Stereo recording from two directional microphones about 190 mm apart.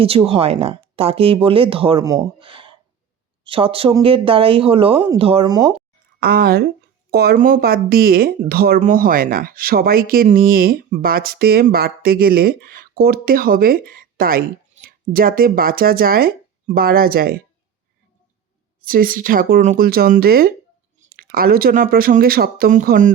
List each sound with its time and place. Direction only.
0.0 s speech: 30° right (ahead or behind)
2.0 s speech: 20° right (ahead or behind)
6.1 s speech: 55° right (ahead or behind)
18.9 s speech: 50° right (ahead or behind)